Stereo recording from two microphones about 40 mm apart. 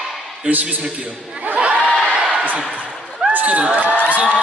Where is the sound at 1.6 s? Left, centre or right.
Right.